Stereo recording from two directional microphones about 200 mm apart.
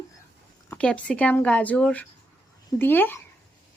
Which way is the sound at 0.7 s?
5° left (ahead or behind).